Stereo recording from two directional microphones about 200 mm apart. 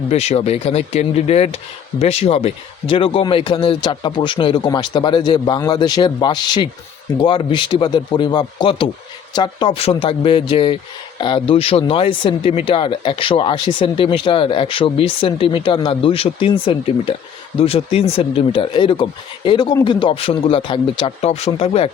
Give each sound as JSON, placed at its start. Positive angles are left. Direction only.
{"t": 0.1, "sound": "speech", "side_deg": 35}